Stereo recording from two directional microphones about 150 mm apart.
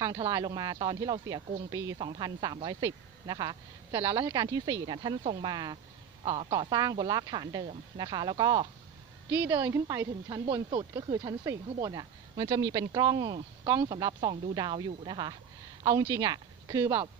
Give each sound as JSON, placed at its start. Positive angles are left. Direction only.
{"t": 0.0, "sound": "speech", "side_deg": -25}